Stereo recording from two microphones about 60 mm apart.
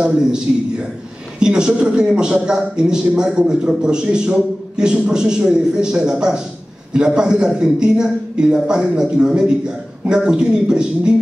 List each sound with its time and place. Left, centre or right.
0.0 s a man's voice: centre